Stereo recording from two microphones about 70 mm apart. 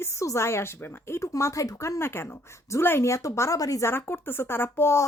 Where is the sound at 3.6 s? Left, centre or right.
Left.